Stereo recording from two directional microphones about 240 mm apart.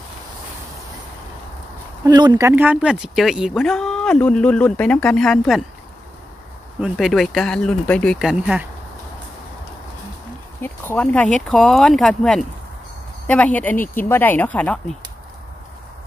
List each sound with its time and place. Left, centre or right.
2.0 s speech: centre
6.8 s speech: centre
10.6 s speech: centre